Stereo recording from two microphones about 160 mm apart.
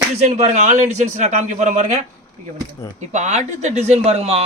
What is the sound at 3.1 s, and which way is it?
Speech, 45° right (ahead or behind).